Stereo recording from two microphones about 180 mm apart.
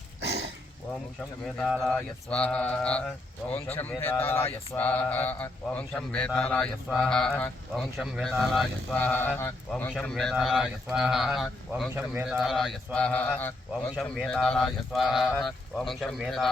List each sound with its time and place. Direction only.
0.2 s a sound: 70° right (ahead or behind)
1.8 s speech: 5° left (ahead or behind)
9.0 s speech: 10° left (ahead or behind)